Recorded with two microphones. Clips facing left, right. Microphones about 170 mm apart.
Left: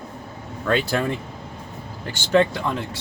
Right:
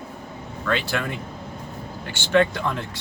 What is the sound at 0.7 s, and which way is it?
Speech, 40° left (ahead or behind).